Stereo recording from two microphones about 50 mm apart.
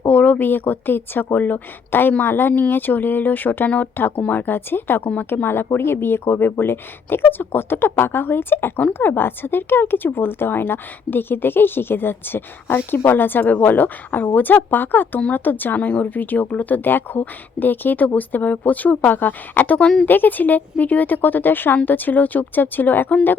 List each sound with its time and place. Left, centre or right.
0.0 s speech: left
15.8 s speech: left
16.0 s speech: left